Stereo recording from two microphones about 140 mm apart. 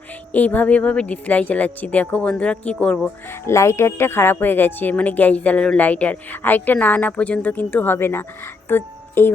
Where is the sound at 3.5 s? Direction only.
20° left (ahead or behind).